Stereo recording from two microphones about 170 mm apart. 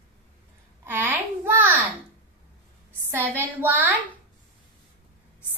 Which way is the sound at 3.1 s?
15° right (ahead or behind).